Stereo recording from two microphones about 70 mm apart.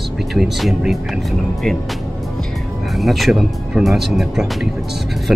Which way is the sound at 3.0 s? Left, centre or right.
Centre.